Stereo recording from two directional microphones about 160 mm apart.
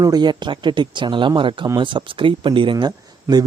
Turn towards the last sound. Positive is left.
turn(degrees=-25)  # may be behind; listen again after turning